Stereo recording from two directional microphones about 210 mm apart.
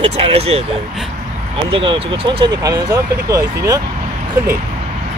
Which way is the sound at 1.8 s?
25° right (ahead or behind).